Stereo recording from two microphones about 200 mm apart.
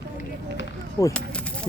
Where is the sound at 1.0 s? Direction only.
15° left (ahead or behind).